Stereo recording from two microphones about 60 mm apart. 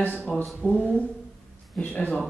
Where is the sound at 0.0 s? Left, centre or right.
Left.